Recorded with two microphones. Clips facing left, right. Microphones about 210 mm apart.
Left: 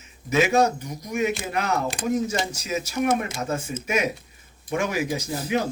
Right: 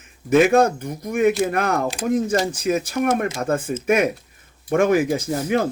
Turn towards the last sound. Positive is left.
turn(degrees=-50)  # may be behind; listen again after turning